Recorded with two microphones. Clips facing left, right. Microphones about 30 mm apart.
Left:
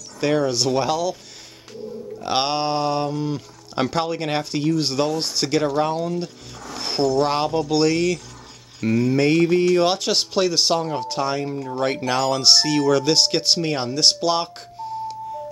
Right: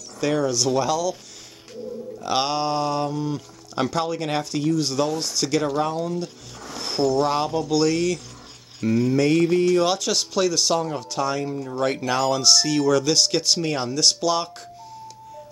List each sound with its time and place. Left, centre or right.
0.2 s speech: left
2.2 s speech: left
3.7 s speech: left
5.7 s speech: left
6.1 s speech: left
8.8 s speech: left
11.4 s speech: centre; by 14.5 s left